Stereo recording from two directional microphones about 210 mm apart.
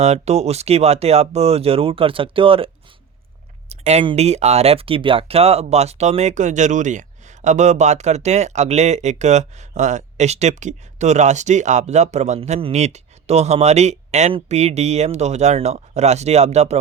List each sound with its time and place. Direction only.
0.0 s speech: 30° right (ahead or behind)
3.7 s speech: 30° right (ahead or behind)